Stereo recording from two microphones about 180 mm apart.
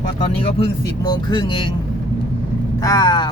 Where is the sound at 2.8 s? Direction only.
20° left (ahead or behind).